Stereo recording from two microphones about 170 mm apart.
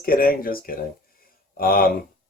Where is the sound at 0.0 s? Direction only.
60° left (ahead or behind).